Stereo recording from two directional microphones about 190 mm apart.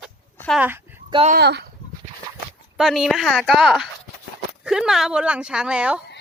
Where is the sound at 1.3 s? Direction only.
60° right (ahead or behind).